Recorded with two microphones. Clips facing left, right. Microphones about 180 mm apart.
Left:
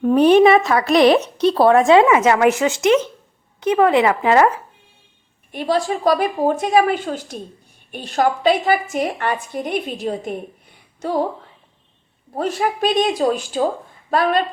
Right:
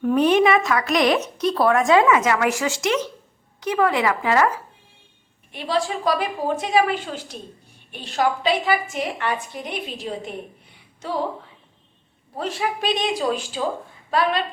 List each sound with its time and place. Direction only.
0.0 s a woman's voice: 30° left (ahead or behind)
5.5 s a woman's voice: 45° left (ahead or behind)
12.3 s a woman's voice: 45° left (ahead or behind)